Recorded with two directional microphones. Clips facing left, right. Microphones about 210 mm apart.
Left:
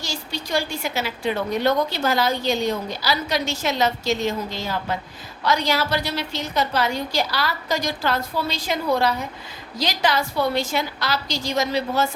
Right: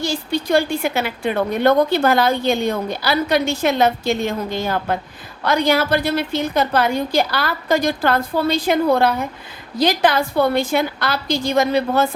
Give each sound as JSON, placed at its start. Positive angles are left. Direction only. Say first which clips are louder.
{"t": 0.0, "sound": "a woman's voice", "louder": "right 9 dB", "side_deg": -55}